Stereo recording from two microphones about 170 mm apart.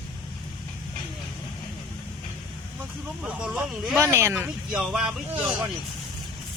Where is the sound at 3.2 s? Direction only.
5° right (ahead or behind).